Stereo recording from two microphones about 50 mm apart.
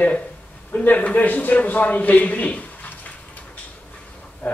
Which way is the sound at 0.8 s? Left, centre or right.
Left.